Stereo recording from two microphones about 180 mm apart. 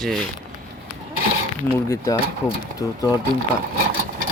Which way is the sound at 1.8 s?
15° left (ahead or behind).